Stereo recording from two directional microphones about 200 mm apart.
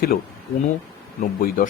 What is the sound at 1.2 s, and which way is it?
Speech, 45° left (ahead or behind).